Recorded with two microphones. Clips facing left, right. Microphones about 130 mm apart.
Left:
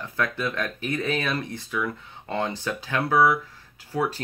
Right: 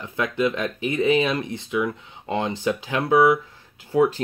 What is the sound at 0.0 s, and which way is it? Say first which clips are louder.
Speech: right 5 dB; 20° right (ahead or behind).